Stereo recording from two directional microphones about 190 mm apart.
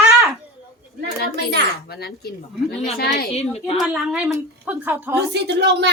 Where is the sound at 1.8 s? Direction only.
55° left (ahead or behind).